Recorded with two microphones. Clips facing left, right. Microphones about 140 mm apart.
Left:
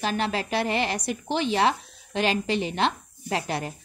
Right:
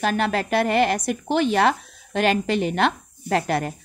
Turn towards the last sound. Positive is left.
turn(degrees=-55)  # may be behind; listen again after turning